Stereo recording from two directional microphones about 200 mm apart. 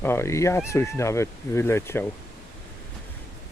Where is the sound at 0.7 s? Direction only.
15° left (ahead or behind).